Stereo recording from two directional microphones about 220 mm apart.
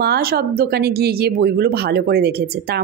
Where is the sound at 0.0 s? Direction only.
45° right (ahead or behind).